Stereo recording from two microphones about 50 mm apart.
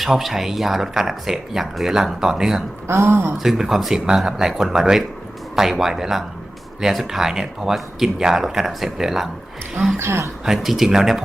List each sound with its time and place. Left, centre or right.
0.0 s speech: centre
2.8 s speech: right
3.3 s speech: centre
10.0 s speech: right
10.4 s speech: centre